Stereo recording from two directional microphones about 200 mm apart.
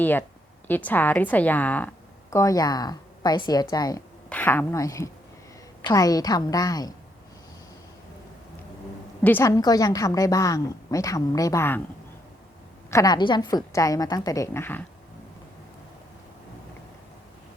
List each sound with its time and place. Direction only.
0.0 s a woman's voice: 10° left (ahead or behind)
4.3 s a woman's voice: 10° left (ahead or behind)
9.2 s a woman's voice: 10° left (ahead or behind)
12.9 s a woman's voice: 20° left (ahead or behind)